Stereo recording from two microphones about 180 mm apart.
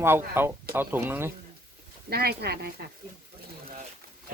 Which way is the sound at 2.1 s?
60° right (ahead or behind).